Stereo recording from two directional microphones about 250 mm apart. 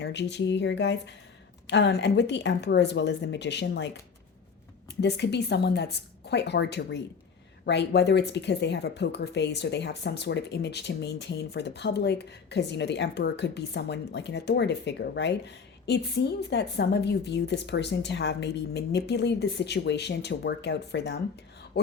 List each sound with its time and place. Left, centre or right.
0.0 s speech: left
4.9 s speech: left